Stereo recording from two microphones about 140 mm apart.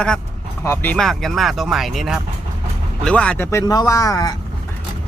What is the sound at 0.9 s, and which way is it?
Speech, centre (ahead or behind).